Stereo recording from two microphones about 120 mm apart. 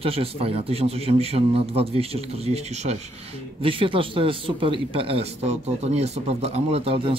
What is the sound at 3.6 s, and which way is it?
Speech, 50° right (ahead or behind).